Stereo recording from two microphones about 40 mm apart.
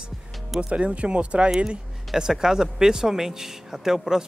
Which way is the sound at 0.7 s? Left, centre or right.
Right.